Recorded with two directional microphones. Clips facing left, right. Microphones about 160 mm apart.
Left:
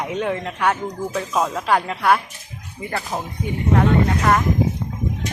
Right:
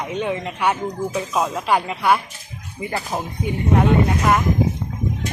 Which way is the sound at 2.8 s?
15° right (ahead or behind).